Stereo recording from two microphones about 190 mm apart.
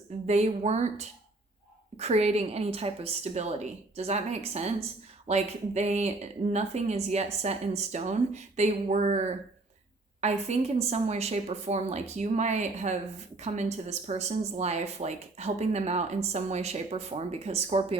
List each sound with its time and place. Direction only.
0.3 s a woman's voice: 35° right (ahead or behind)